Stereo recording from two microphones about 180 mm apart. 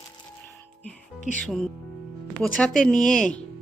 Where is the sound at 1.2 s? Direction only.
45° left (ahead or behind).